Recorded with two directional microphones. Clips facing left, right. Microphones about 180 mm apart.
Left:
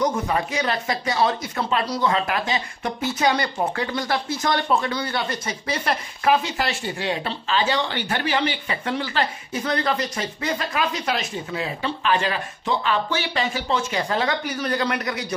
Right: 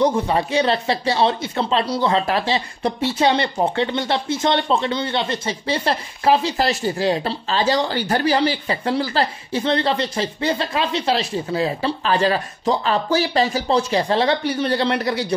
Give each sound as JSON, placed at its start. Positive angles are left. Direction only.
{"t": 0.0, "sound": "speech", "side_deg": -30}